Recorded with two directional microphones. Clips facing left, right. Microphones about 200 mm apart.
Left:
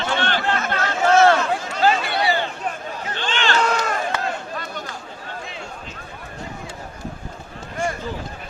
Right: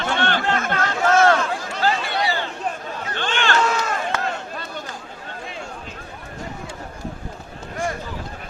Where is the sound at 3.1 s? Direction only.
50° right (ahead or behind).